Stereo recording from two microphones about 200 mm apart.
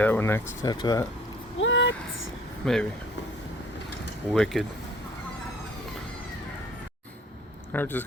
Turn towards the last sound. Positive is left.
turn(degrees=10)  # may be behind; listen again after turning